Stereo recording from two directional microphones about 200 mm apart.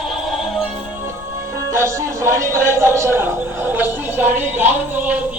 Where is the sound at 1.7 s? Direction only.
15° right (ahead or behind).